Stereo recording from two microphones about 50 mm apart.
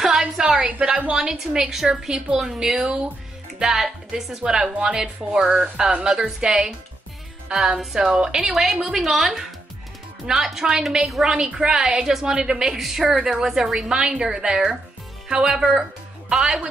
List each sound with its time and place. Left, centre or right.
0.0 s a sound: centre
0.6 s a woman's voice: right
11.1 s a woman's voice: centre
11.3 s a woman's voice: centre